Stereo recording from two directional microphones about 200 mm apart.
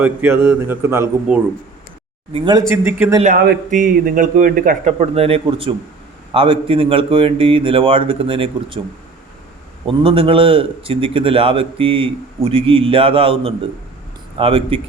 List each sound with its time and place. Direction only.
0.0 s a man's voice: 10° right (ahead or behind)
2.3 s a man's voice: 25° right (ahead or behind)
3.2 s a man's voice: 50° right (ahead or behind); by 8.8 s 25° right (ahead or behind)
9.8 s a man's voice: 25° right (ahead or behind)